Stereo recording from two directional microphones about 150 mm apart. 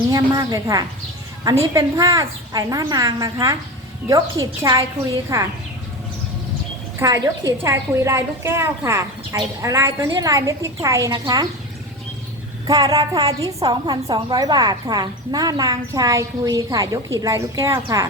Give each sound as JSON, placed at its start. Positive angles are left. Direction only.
{"t": 0.1, "sound": "a woman's voice", "side_deg": -25}
{"t": 7.0, "sound": "a woman's voice", "side_deg": -20}
{"t": 12.6, "sound": "a woman's voice", "side_deg": -25}